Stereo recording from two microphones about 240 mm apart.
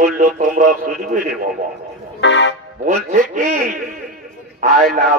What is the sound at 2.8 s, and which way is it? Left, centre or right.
Music, right.